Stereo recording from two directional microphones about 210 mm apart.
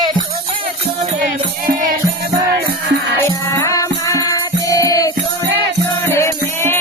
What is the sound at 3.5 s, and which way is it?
Music, 15° left (ahead or behind).